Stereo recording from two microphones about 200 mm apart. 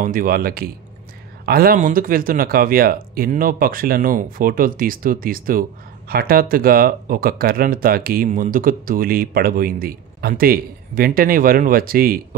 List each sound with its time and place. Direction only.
0.0 s speech: 45° right (ahead or behind)